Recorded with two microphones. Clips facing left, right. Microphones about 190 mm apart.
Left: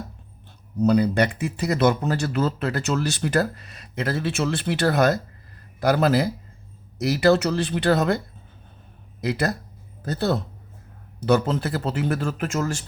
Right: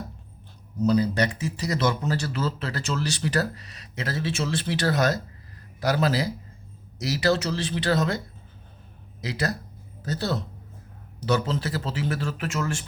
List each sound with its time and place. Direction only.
0.8 s speech: 60° left (ahead or behind)
9.2 s speech: 55° left (ahead or behind); by 12.8 s 40° left (ahead or behind)